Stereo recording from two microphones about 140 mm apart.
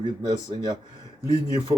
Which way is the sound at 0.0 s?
30° right (ahead or behind).